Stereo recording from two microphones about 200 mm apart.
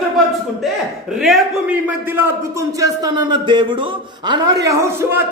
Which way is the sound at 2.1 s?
10° right (ahead or behind).